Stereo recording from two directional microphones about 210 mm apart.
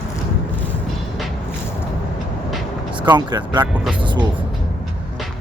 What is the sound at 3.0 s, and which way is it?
Speech, 20° right (ahead or behind).